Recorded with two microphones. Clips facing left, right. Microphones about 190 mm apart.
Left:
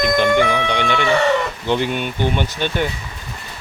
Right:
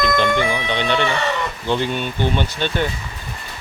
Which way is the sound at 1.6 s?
15° left (ahead or behind).